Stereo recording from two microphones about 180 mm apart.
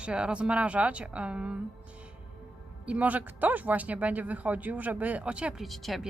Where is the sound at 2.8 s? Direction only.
5° right (ahead or behind).